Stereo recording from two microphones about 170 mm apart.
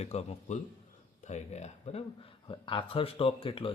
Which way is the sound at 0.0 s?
40° left (ahead or behind).